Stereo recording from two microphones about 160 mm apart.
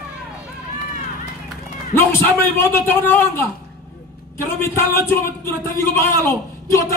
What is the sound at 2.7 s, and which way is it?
Speech, 15° left (ahead or behind).